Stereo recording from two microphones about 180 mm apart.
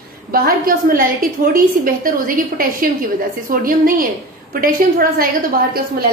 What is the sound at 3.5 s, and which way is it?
A woman's voice, 50° right (ahead or behind).